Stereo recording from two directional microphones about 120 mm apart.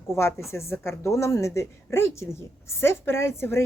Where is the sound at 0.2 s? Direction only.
20° left (ahead or behind).